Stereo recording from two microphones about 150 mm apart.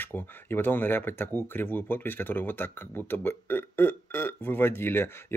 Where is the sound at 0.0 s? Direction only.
15° left (ahead or behind).